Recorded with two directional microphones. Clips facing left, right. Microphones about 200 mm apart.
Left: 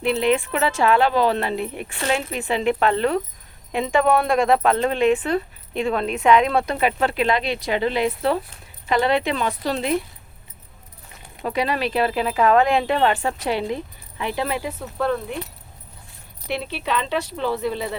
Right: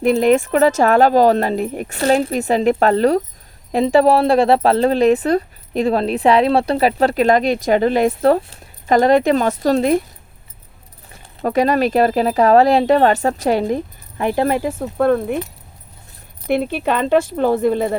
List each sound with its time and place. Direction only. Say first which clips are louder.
0.0 s speech: right 6 dB; 45° right (ahead or behind)
11.4 s speech: right 7 dB; 45° right (ahead or behind)
16.5 s speech: right 8 dB; 50° right (ahead or behind)